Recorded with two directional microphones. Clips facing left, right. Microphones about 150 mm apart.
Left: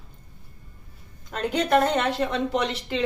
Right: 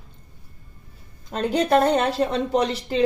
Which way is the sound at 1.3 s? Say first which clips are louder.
Right 2 dB; 35° right (ahead or behind).